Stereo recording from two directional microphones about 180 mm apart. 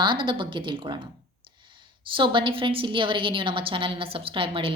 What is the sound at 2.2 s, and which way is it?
A woman's voice, 30° right (ahead or behind).